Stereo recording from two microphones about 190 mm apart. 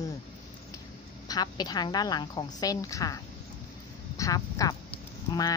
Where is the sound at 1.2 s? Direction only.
20° left (ahead or behind).